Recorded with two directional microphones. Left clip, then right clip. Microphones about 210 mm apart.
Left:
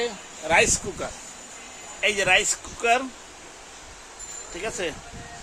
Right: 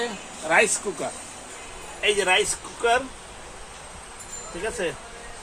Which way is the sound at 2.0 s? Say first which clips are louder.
Even; 25° left (ahead or behind).